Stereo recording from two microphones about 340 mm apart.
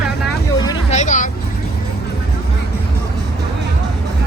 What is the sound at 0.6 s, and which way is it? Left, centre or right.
Vehicle, centre.